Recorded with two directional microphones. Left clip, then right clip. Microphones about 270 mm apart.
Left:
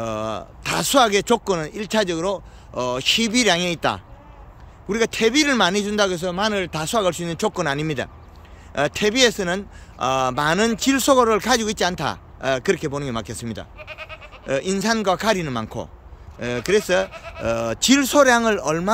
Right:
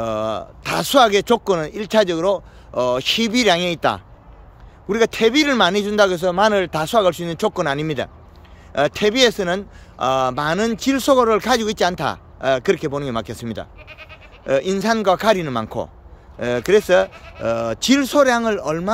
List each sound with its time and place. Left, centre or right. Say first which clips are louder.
0.0 s speech: right 4 dB; centre
13.7 s goat: left 4 dB; centre
14.4 s speech: right 4 dB; centre
17.1 s speech: left 4 dB; left
17.4 s speech: right 1 dB; centre